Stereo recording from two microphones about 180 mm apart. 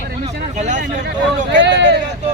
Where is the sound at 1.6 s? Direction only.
75° right (ahead or behind).